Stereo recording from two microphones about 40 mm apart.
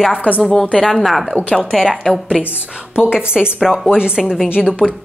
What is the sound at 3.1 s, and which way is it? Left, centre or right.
A woman's voice, right.